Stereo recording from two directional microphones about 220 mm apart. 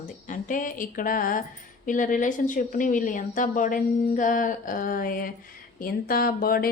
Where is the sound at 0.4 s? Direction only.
35° left (ahead or behind).